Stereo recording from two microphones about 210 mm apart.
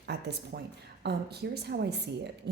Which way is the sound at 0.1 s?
50° right (ahead or behind).